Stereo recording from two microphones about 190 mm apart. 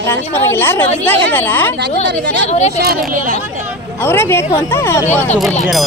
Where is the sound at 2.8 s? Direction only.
50° right (ahead or behind).